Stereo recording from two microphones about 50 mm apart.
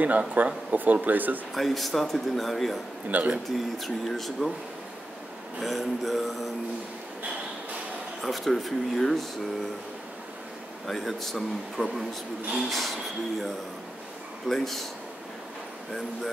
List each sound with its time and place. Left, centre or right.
0.0 s speech: right
1.5 s speech: centre
3.1 s speech: right
3.5 s speech: centre
5.6 s speech: centre
8.2 s speech: centre
10.9 s speech: centre
14.5 s speech: centre